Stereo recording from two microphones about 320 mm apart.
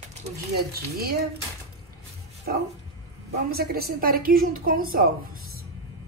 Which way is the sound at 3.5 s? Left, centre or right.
Right.